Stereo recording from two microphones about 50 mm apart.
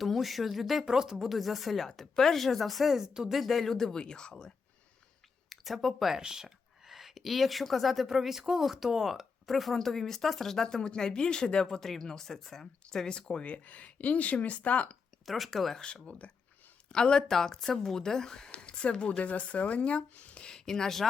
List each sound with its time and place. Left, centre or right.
0.0 s speech: centre
5.5 s speech: centre; by 14.9 s left
15.3 s speech: centre
15.8 s speech: left
18.5 s speech: left